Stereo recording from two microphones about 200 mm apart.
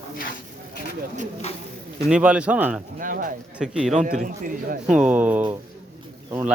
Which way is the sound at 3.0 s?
40° right (ahead or behind).